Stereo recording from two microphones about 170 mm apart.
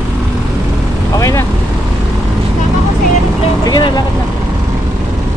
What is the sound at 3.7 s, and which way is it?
Vehicle, 25° left (ahead or behind).